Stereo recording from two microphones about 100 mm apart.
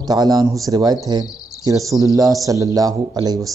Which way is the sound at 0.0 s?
40° right (ahead or behind).